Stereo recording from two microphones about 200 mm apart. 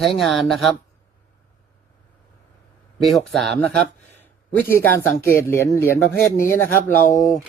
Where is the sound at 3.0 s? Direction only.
Centre (ahead or behind).